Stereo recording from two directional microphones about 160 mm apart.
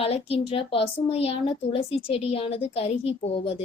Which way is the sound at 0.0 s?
35° left (ahead or behind).